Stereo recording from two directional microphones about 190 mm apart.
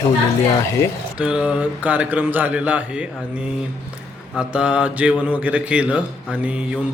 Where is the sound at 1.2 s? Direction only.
5° right (ahead or behind).